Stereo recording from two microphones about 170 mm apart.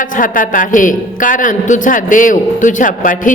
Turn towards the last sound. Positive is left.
turn(degrees=50)  # may be behind; listen again after turning